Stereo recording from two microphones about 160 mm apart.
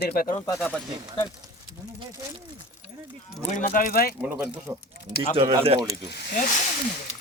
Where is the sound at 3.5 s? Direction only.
55° left (ahead or behind).